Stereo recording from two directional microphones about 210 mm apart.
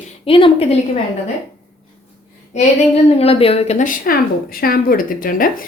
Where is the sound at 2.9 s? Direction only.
30° left (ahead or behind).